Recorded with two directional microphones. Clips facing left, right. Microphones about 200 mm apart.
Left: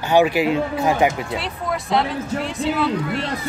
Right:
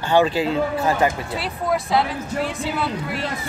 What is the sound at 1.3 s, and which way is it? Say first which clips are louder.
Speech: right 2 dB; centre (ahead or behind).